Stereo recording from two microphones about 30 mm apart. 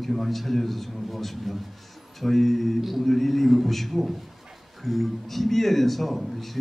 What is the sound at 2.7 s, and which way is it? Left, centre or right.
Speech, centre.